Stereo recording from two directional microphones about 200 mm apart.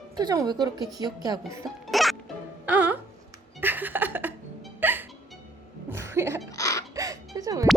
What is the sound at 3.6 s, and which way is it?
Laughter, 10° right (ahead or behind).